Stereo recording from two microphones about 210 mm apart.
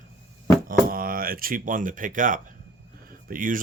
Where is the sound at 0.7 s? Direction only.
45° right (ahead or behind).